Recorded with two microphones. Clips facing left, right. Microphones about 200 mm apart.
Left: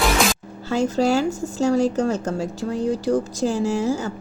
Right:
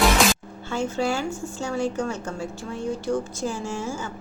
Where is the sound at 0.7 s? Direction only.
40° left (ahead or behind).